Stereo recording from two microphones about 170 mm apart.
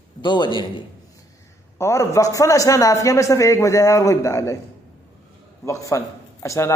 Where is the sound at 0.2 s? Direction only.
30° left (ahead or behind).